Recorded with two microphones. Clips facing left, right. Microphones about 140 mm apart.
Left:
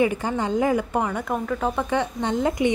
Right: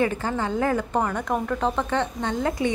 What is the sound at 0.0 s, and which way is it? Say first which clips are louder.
A woman's voice: left 2 dB; 15° left (ahead or behind).